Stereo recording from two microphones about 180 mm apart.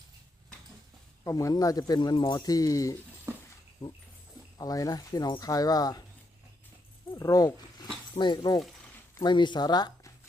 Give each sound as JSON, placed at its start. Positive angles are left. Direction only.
{"t": 1.2, "sound": "speech", "side_deg": 20}
{"t": 3.3, "sound": "a sound", "side_deg": -15}
{"t": 4.5, "sound": "speech", "side_deg": 20}
{"t": 7.1, "sound": "dog", "side_deg": 20}
{"t": 8.1, "sound": "speech", "side_deg": 25}